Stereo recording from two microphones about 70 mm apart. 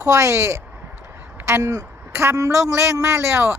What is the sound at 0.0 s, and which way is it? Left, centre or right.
Speech, right.